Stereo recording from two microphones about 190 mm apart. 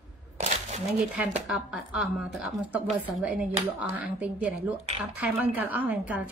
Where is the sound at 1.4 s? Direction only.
5° right (ahead or behind).